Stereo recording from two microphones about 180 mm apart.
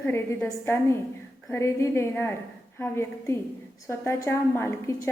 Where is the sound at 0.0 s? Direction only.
15° left (ahead or behind).